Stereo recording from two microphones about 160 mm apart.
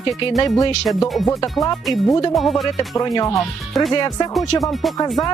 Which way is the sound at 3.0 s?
20° left (ahead or behind).